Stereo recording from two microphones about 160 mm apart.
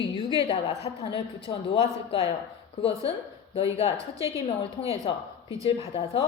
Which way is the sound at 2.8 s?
35° left (ahead or behind).